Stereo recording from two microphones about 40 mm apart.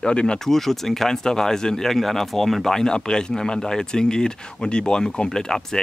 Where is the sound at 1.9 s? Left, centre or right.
Centre.